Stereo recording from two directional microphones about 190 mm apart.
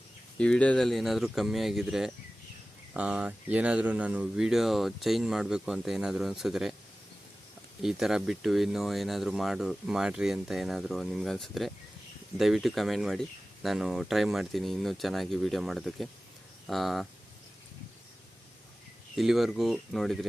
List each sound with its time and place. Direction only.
0.3 s speech: 5° left (ahead or behind)
7.8 s speech: 5° right (ahead or behind)
19.1 s speech: centre (ahead or behind)